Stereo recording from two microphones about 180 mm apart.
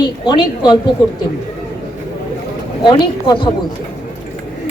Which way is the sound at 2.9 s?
25° left (ahead or behind).